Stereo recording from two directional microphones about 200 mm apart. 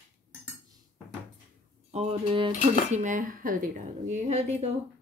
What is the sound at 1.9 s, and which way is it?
Speech, 30° right (ahead or behind).